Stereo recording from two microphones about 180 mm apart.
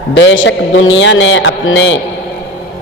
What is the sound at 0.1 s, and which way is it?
Mantra, 90° left.